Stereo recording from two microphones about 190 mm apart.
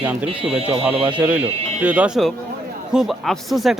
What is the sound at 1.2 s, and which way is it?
Speech, 5° right (ahead or behind).